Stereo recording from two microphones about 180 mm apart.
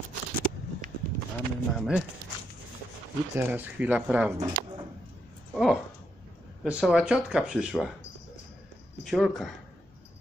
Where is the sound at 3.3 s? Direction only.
10° right (ahead or behind).